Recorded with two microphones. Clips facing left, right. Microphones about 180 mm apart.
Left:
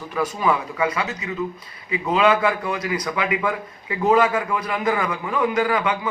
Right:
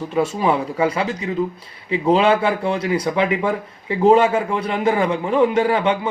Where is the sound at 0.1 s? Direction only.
25° right (ahead or behind).